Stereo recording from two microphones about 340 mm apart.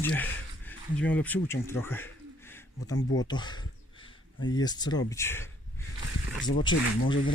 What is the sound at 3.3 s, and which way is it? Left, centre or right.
Speech, centre.